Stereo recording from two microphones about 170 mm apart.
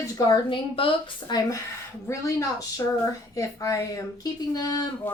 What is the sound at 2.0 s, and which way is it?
A woman's voice, 20° left (ahead or behind).